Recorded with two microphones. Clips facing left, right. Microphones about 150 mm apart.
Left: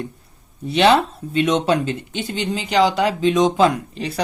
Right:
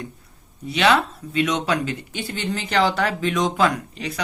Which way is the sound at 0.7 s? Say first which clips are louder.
Left 4 dB; 30° left (ahead or behind).